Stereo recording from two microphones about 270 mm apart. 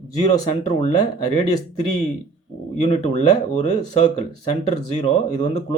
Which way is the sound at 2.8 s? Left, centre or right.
Left.